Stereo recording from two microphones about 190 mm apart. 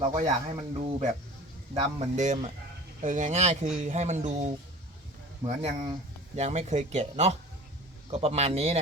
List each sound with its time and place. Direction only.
0.0 s speech: 35° right (ahead or behind)